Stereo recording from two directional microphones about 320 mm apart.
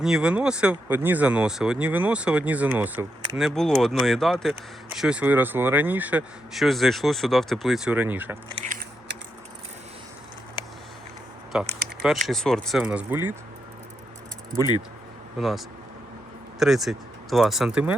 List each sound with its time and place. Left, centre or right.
0.0 s speech: centre
8.6 s biting: right
11.5 s speech: centre
15.4 s speech: centre